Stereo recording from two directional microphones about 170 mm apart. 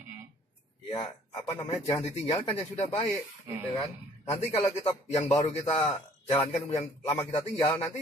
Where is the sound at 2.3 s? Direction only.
30° left (ahead or behind).